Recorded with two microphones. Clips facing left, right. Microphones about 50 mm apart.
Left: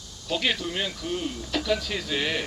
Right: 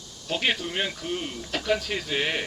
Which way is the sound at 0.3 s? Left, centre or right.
Right.